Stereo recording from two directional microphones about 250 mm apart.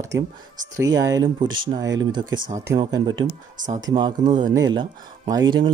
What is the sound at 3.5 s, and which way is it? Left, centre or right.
Speech, right.